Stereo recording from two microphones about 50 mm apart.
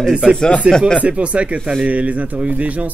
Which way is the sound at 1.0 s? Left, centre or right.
Right.